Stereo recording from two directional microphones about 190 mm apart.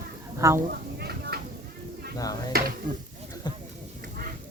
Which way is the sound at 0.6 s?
55° right (ahead or behind).